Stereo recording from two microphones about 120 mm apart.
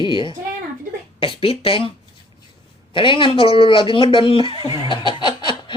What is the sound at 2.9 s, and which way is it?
Speech, 45° left (ahead or behind).